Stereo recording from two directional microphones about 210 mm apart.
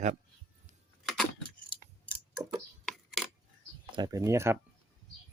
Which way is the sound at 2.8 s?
Centre (ahead or behind).